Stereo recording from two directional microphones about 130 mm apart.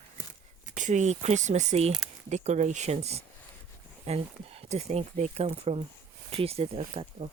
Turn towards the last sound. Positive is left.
turn(degrees=-50)  # may be behind; listen again after turning